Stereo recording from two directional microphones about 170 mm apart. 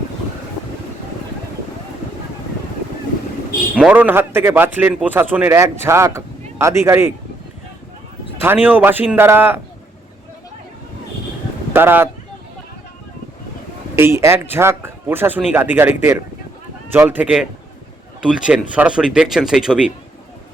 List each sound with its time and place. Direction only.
3.8 s speech: 10° right (ahead or behind)
8.4 s speech: 10° right (ahead or behind)
11.7 s speech: 15° right (ahead or behind)
13.9 s speech: 15° right (ahead or behind)